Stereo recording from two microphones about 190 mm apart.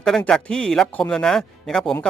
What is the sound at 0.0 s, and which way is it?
Speech, 5° left (ahead or behind).